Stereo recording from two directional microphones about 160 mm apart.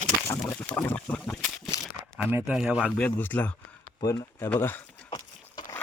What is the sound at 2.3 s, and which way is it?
Speech, 15° right (ahead or behind).